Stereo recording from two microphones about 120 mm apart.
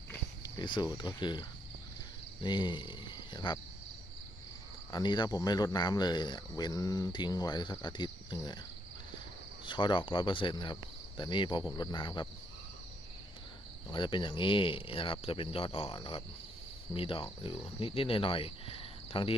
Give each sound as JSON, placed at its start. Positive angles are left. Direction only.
{"t": 0.4, "sound": "speech", "side_deg": 40}
{"t": 4.9, "sound": "speech", "side_deg": 35}
{"t": 9.6, "sound": "speech", "side_deg": 40}
{"t": 13.9, "sound": "speech", "side_deg": 40}